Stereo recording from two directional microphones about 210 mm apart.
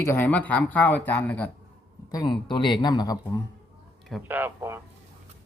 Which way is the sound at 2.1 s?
20° left (ahead or behind).